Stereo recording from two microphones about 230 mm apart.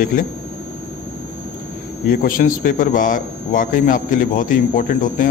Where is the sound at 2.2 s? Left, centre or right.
Left.